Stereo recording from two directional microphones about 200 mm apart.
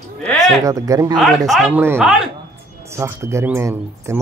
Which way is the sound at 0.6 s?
15° right (ahead or behind).